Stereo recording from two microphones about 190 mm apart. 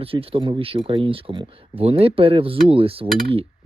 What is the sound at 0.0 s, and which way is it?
Speech, 30° right (ahead or behind).